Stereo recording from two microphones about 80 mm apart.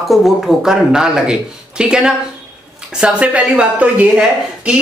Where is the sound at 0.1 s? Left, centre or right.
Centre.